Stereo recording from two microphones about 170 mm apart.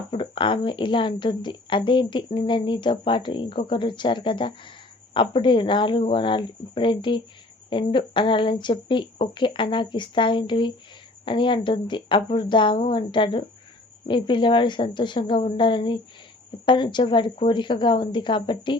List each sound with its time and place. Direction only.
0.1 s a woman's voice: 30° left (ahead or behind)